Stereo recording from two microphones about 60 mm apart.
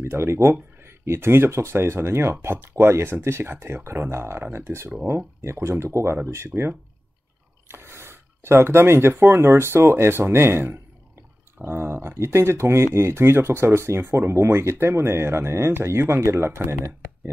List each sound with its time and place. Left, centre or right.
0.0 s speech: right